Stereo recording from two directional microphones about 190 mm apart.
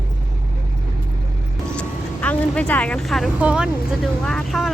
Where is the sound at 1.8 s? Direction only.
5° left (ahead or behind).